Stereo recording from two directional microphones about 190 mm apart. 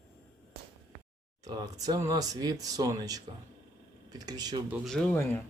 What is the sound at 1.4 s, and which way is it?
Speech, 20° right (ahead or behind).